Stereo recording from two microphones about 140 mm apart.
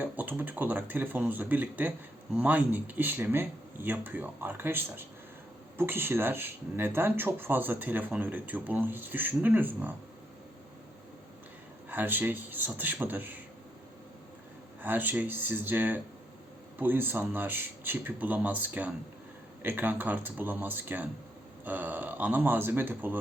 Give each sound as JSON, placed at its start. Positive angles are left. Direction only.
{"t": 0.0, "sound": "speech", "side_deg": -15}
{"t": 11.9, "sound": "speech", "side_deg": -15}
{"t": 14.8, "sound": "speech", "side_deg": -15}